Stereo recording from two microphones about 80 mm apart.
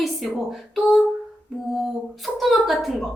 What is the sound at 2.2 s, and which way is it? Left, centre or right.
Speech, centre.